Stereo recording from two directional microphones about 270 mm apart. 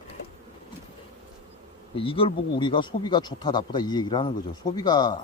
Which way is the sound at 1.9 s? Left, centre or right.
Centre.